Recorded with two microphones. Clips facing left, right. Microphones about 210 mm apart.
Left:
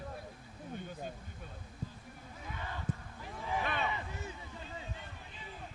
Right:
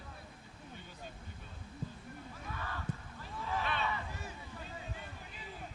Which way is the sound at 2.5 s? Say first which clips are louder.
Left 2 dB; 20° left (ahead or behind).